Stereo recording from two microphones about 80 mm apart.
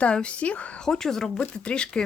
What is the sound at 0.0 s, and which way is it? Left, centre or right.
A woman's voice, centre.